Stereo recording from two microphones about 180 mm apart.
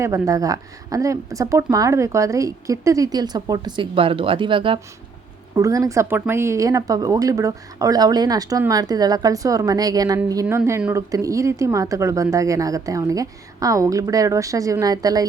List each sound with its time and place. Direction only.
0.0 s a woman's voice: 20° right (ahead or behind)